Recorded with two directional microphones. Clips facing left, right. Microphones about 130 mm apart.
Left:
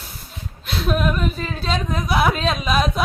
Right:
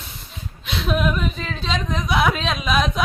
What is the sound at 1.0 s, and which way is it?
Speech, centre (ahead or behind).